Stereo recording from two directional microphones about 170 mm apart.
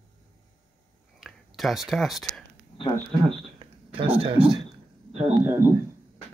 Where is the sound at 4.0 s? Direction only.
30° right (ahead or behind).